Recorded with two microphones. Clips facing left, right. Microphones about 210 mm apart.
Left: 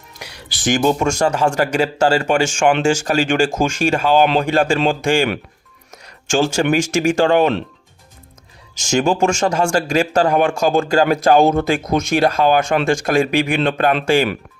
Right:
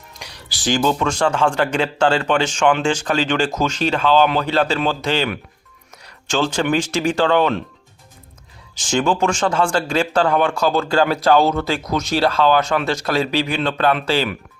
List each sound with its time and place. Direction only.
0.1 s a sound: 5° left (ahead or behind)
0.5 s speech: 55° left (ahead or behind)
0.8 s speech: 15° left (ahead or behind)
1.0 s speech: 45° left (ahead or behind)
4.0 s speech: 15° left (ahead or behind)
4.4 s speech: 50° left (ahead or behind)
8.7 s speech: 45° left (ahead or behind)
11.7 s speech: 20° left (ahead or behind)
11.9 s speech: 50° left (ahead or behind)